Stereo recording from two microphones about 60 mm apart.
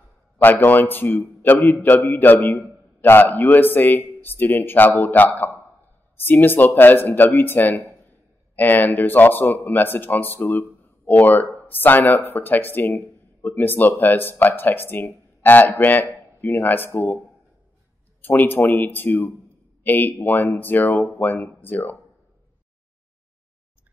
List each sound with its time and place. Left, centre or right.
0.7 s speech: left
18.2 s speech: left